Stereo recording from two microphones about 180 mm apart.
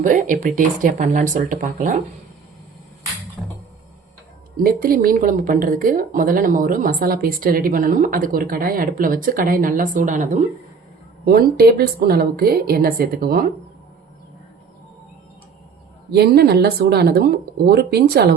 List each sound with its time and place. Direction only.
0.0 s a woman's voice: 45° right (ahead or behind)
3.4 s music: 10° right (ahead or behind)
4.6 s a woman's voice: 55° right (ahead or behind)
11.3 s a woman's voice: 55° right (ahead or behind)
16.1 s a woman's voice: 60° right (ahead or behind)